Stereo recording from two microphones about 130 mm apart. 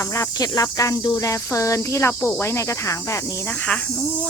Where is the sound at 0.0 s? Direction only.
25° left (ahead or behind).